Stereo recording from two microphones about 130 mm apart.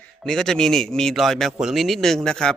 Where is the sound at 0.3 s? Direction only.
5° left (ahead or behind).